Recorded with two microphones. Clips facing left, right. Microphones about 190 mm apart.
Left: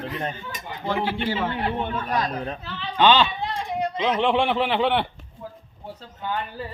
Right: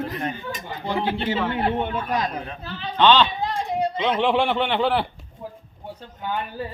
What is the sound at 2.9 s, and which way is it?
Speech, 10° left (ahead or behind).